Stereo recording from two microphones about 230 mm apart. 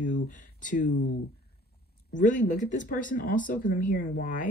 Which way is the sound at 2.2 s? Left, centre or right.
Left.